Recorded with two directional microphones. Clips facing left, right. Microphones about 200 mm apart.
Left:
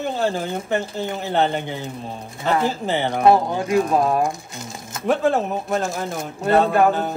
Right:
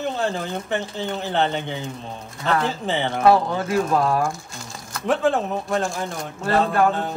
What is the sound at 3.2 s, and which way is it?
Speech, 20° left (ahead or behind).